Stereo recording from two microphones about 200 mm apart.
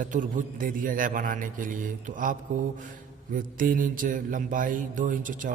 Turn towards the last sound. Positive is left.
turn(degrees=-40)  # may be behind; listen again after turning